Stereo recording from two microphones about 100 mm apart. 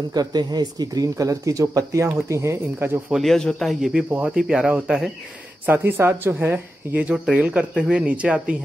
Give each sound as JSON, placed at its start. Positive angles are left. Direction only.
{"t": 0.1, "sound": "a woman's voice", "side_deg": -45}
{"t": 3.1, "sound": "a man's voice", "side_deg": 0}
{"t": 5.7, "sound": "a woman's voice", "side_deg": -20}